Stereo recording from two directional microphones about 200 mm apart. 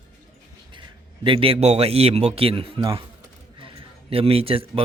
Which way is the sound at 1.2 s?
25° right (ahead or behind).